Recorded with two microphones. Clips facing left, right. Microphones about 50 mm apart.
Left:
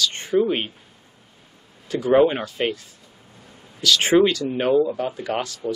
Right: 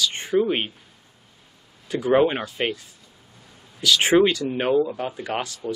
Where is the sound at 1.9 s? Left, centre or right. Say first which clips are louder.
Left 2 dB; centre.